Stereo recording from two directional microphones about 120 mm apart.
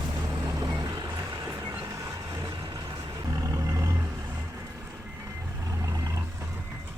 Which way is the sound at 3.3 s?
30° right (ahead or behind).